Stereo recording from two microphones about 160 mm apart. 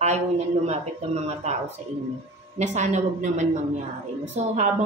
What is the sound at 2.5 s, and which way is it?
A woman's voice, 50° right (ahead or behind).